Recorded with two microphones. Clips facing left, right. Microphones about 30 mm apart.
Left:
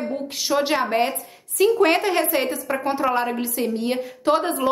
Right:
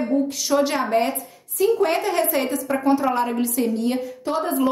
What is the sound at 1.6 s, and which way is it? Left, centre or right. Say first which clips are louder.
Speech: left 2 dB; left.